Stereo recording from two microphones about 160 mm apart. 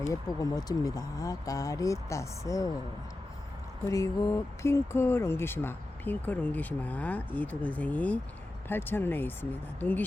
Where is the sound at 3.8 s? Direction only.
20° left (ahead or behind).